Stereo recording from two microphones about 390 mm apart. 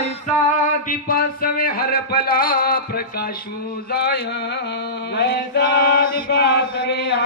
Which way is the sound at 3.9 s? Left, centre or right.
Left.